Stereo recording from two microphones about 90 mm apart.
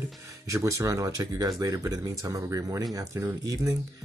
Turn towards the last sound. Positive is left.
turn(degrees=-40)  # may be behind; listen again after turning